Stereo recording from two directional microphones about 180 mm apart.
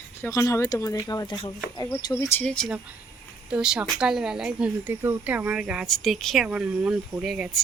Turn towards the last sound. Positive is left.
turn(degrees=0)  # may be behind; listen again after turning